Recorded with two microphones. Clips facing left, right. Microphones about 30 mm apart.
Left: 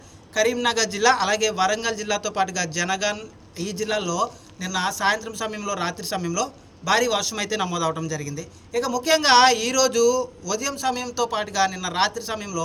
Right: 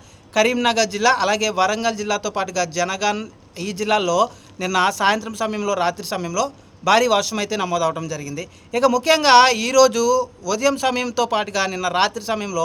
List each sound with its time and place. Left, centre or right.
0.3 s a man's voice: right
0.8 s a man's voice: centre
3.8 s a man's voice: right
4.9 s a man's voice: right
5.2 s a man's voice: right
6.8 s a man's voice: right
7.3 s a man's voice: centre
8.3 s speech: right
9.0 s a man's voice: right
10.6 s a man's voice: right
11.3 s a man's voice: right